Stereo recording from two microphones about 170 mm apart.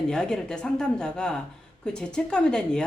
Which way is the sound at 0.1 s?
5° left (ahead or behind).